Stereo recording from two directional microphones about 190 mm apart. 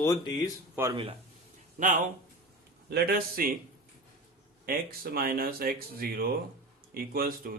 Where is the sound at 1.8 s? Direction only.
40° right (ahead or behind).